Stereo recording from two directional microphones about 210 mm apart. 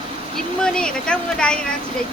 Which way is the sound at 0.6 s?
5° left (ahead or behind).